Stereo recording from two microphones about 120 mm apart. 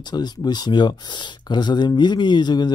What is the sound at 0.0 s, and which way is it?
Speech, 35° left (ahead or behind).